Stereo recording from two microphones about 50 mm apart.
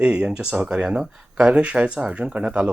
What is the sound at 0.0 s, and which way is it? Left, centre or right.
Speech, centre.